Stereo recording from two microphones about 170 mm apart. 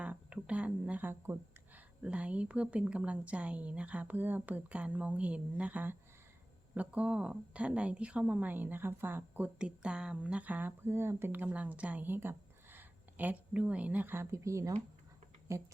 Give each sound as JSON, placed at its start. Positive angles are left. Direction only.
{"t": 0.0, "sound": "a woman's voice", "side_deg": -5}